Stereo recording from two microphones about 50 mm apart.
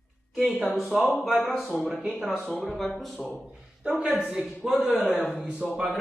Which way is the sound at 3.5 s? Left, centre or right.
Right.